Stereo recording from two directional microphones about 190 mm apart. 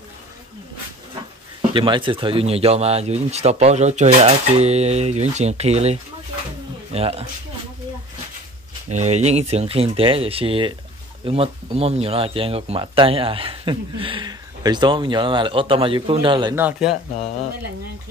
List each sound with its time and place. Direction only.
1.7 s a man's voice: 25° right (ahead or behind)
8.9 s speech: 35° right (ahead or behind)
16.5 s speech: 10° right (ahead or behind)